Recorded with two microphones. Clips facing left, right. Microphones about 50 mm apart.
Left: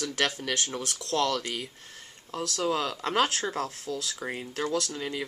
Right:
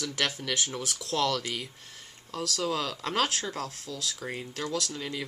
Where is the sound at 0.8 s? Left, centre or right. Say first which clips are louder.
Left 2 dB; centre.